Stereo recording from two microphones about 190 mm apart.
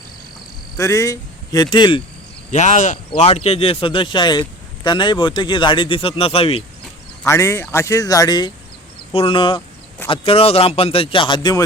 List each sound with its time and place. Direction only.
0.8 s speech: 15° left (ahead or behind)
2.5 s speech: 40° left (ahead or behind)
7.3 s speech: 15° left (ahead or behind)